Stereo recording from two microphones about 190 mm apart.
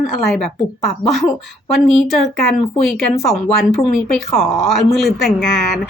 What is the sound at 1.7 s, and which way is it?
Speech, centre (ahead or behind).